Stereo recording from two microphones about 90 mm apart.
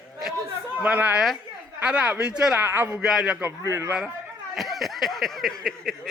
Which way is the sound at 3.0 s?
5° right (ahead or behind).